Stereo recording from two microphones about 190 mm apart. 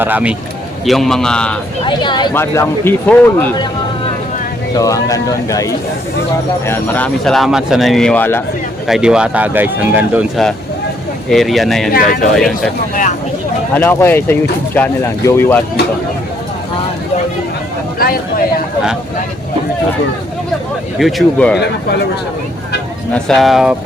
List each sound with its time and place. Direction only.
0.0 s speech: 10° right (ahead or behind)
1.8 s speech: 25° left (ahead or behind)
2.3 s speech: 10° left (ahead or behind)
4.7 s speech: 15° left (ahead or behind)
8.9 s speech: 5° right (ahead or behind)
11.9 s speech: 50° left (ahead or behind)
12.4 s speech: centre (ahead or behind)
12.9 s speech: 45° left (ahead or behind)
13.7 s speech: 10° left (ahead or behind)
18.0 s a sound: 50° left (ahead or behind)
21.0 s speech: 5° left (ahead or behind)
23.1 s speech: centre (ahead or behind)